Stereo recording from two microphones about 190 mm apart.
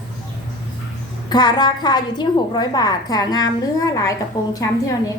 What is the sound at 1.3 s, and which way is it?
A woman's voice, 20° left (ahead or behind).